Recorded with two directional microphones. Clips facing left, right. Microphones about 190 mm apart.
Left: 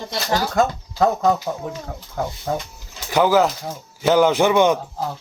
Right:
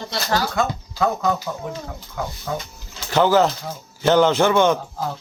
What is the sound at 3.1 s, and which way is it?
Speech, 10° left (ahead or behind).